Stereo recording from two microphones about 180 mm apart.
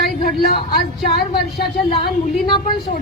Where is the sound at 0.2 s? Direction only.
55° left (ahead or behind).